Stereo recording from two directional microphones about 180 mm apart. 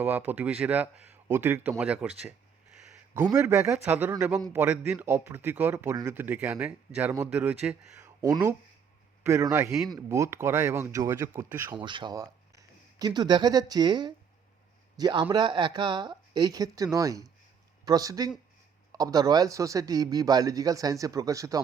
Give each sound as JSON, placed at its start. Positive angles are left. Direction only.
{"t": 0.0, "sound": "a man's voice", "side_deg": -10}
{"t": 8.2, "sound": "a man's voice", "side_deg": -20}
{"t": 11.8, "sound": "a man's voice", "side_deg": -25}